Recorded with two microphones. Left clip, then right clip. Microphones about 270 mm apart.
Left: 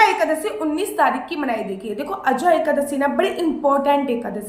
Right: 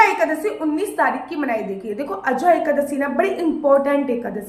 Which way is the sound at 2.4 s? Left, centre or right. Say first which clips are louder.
Right 2 dB; centre.